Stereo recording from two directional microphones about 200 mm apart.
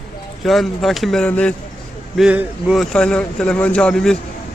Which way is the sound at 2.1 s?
5° right (ahead or behind).